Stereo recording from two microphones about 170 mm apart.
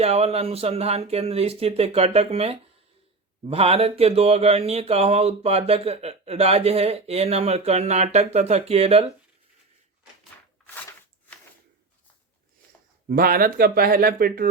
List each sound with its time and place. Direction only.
0.0 s speech: 35° right (ahead or behind)
13.1 s speech: 60° right (ahead or behind)